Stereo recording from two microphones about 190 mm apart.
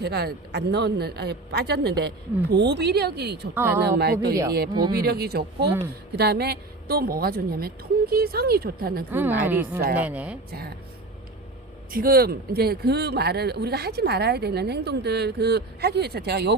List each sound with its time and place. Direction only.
0.0 s speech: 60° right (ahead or behind)
3.5 s a woman's voice: 10° right (ahead or behind)
3.9 s a woman's voice: 60° right (ahead or behind)
9.1 s a woman's voice: 10° right (ahead or behind)
11.9 s speech: 50° right (ahead or behind)